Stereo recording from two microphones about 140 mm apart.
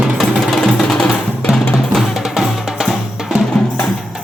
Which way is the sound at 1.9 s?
Centre (ahead or behind).